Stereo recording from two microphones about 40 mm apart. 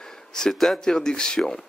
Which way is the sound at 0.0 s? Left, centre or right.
Centre.